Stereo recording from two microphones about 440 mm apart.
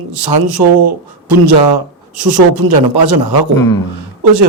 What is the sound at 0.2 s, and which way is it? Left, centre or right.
A man's voice, right.